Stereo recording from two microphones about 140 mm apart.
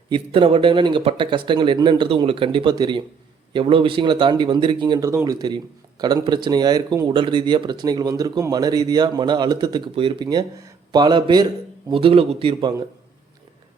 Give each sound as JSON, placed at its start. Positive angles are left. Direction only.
{"t": 0.1, "sound": "speech", "side_deg": -40}